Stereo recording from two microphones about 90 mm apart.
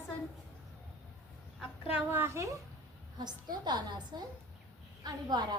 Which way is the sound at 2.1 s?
30° right (ahead or behind).